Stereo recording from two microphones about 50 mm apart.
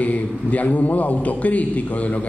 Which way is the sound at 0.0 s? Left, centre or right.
Left.